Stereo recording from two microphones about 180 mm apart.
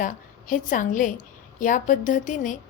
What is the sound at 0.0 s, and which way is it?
A woman's voice, 45° left (ahead or behind).